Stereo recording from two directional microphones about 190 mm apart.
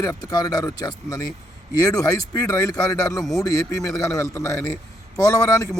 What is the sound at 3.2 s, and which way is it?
Speech, centre (ahead or behind).